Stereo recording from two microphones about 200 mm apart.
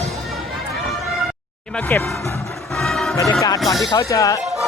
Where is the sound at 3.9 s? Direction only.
15° left (ahead or behind).